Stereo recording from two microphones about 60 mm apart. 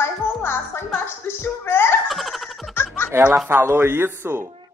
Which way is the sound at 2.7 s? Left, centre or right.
Left.